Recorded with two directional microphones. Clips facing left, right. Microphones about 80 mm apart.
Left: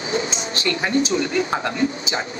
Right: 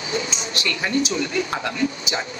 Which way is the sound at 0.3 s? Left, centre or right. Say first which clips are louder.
Left 3 dB; left.